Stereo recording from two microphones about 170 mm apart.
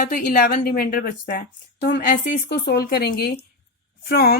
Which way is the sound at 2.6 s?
65° left (ahead or behind).